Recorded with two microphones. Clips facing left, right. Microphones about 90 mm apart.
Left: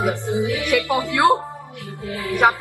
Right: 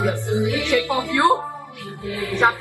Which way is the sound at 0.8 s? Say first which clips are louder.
Left 2 dB; 20° left (ahead or behind).